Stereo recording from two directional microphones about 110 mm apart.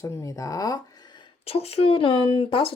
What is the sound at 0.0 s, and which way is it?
Speech, 30° left (ahead or behind).